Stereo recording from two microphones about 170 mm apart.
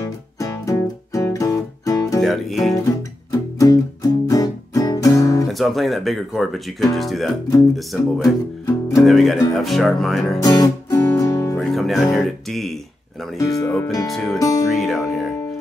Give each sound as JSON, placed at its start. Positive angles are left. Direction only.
{"t": 0.0, "sound": "music", "side_deg": 20}
{"t": 2.2, "sound": "speech", "side_deg": 0}
{"t": 2.7, "sound": "music", "side_deg": 20}
{"t": 5.5, "sound": "speech", "side_deg": 0}
{"t": 8.6, "sound": "music", "side_deg": 20}
{"t": 9.0, "sound": "speech", "side_deg": 0}
{"t": 10.4, "sound": "music", "side_deg": 20}
{"t": 11.6, "sound": "music", "side_deg": 0}
{"t": 13.4, "sound": "speech", "side_deg": 20}
{"t": 14.1, "sound": "speech", "side_deg": 0}
{"t": 14.7, "sound": "music", "side_deg": 0}